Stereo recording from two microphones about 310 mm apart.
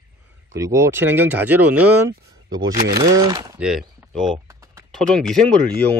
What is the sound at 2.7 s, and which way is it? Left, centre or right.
Speech, right.